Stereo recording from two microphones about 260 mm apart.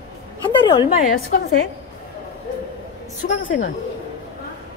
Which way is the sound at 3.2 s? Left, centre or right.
Left.